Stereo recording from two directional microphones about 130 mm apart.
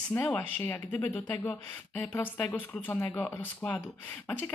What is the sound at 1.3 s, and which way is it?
Speech, 15° left (ahead or behind).